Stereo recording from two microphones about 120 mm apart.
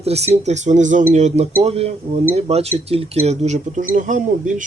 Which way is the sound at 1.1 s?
70° right (ahead or behind).